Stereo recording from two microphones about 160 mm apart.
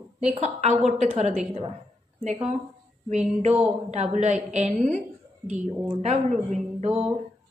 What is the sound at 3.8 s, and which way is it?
A woman's voice, 45° right (ahead or behind).